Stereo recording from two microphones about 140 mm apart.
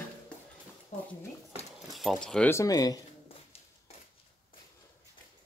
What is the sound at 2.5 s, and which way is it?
Speech, 25° left (ahead or behind).